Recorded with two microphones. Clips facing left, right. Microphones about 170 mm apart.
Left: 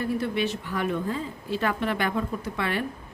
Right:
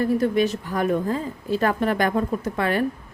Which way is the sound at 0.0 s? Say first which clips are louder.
Right 6 dB; 40° right (ahead or behind).